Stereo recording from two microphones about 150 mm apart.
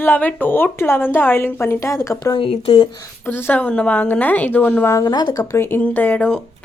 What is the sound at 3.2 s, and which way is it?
A woman's voice, 15° left (ahead or behind).